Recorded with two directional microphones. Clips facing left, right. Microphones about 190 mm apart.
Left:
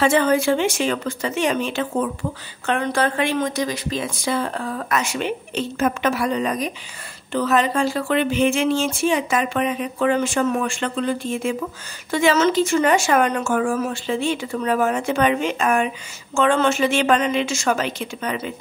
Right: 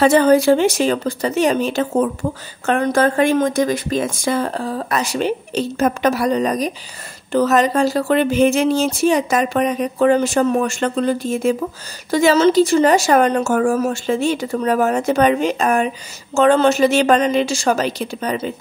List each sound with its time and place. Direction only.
0.0 s speech: 40° right (ahead or behind)